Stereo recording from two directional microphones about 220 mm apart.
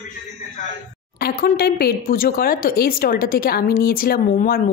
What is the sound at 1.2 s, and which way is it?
Speech, 45° left (ahead or behind).